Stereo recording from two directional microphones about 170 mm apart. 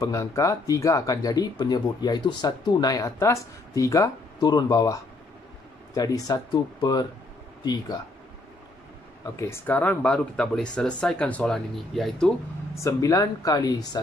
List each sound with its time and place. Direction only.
0.0 s speech: 20° left (ahead or behind)
9.2 s speech: 15° left (ahead or behind); by 12.3 s centre (ahead or behind)
12.7 s speech: 20° left (ahead or behind)